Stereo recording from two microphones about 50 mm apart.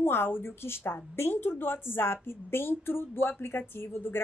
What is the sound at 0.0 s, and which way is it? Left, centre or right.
Speech, left.